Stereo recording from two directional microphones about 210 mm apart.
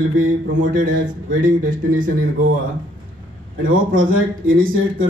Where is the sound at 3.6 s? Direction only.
40° right (ahead or behind).